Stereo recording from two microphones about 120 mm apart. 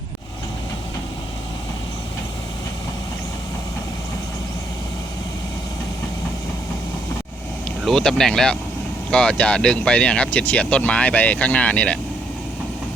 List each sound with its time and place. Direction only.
7.9 s speech: 5° left (ahead or behind)